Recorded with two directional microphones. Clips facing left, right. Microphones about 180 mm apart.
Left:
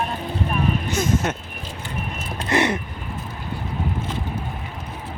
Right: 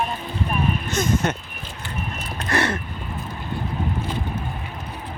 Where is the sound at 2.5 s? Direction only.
20° left (ahead or behind).